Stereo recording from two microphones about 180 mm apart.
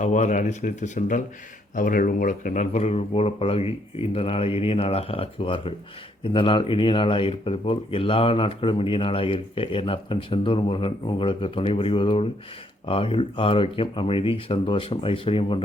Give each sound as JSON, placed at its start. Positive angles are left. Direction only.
{"t": 0.0, "sound": "speech", "side_deg": 45}